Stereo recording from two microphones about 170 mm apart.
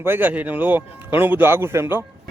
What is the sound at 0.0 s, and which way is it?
Speech, 10° right (ahead or behind).